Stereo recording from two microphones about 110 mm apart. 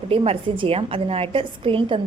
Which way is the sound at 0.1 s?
60° right (ahead or behind).